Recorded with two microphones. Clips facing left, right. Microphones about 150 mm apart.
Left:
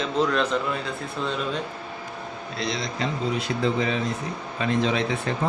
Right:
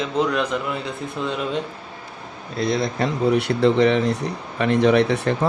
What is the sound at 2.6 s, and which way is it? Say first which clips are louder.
Speech: right 7 dB; 55° right (ahead or behind).